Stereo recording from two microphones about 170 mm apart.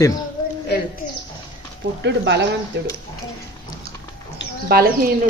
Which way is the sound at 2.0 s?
90° right.